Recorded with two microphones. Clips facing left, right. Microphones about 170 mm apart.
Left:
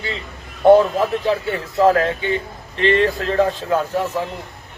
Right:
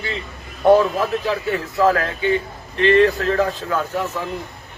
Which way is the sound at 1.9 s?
35° left (ahead or behind).